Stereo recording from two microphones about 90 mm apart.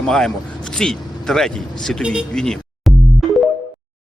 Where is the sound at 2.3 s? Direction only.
5° left (ahead or behind).